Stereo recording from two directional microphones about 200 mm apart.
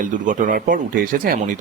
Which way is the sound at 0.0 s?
40° right (ahead or behind).